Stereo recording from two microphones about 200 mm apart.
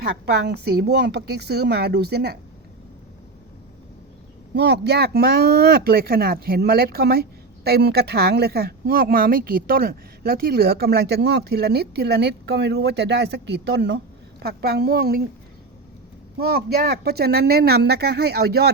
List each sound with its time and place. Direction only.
0.0 s speech: 55° right (ahead or behind)
4.5 s speech: 60° right (ahead or behind)
16.4 s speech: 50° right (ahead or behind)